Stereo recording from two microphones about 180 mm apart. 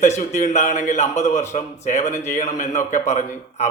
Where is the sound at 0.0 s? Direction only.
40° left (ahead or behind).